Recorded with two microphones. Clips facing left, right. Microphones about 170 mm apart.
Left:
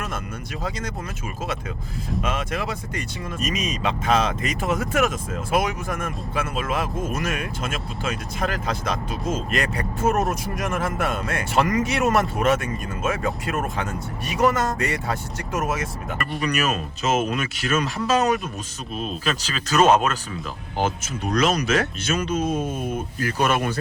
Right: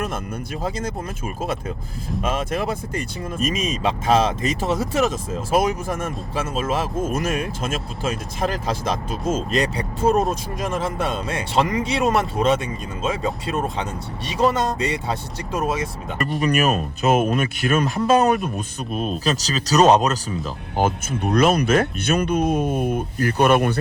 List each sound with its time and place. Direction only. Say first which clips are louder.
2.2 s speech: right 5 dB; 35° right (ahead or behind)
10.2 s speech: right 2 dB; 20° right (ahead or behind)
16.4 s speech: right 5 dB; 45° right (ahead or behind)
20.7 s speech: right 4 dB; 50° right (ahead or behind)